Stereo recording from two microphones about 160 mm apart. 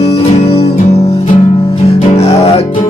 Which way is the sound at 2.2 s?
40° left (ahead or behind).